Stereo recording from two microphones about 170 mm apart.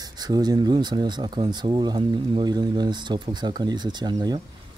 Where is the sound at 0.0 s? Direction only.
25° right (ahead or behind).